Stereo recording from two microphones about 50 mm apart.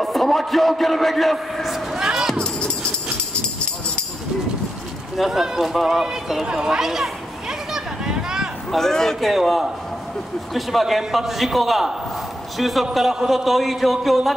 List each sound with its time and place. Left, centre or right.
0.0 s a man's voice: centre
2.0 s music: centre
2.3 s music: centre
5.1 s speech: centre
6.4 s a sound: centre
8.7 s a man's voice: centre